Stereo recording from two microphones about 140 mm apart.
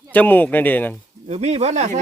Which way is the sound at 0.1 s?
10° left (ahead or behind).